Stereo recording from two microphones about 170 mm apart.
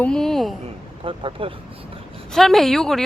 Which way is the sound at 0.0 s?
5° left (ahead or behind).